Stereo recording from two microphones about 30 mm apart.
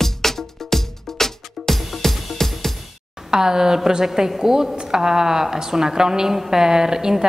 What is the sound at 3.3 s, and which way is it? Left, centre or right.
A woman's voice, centre.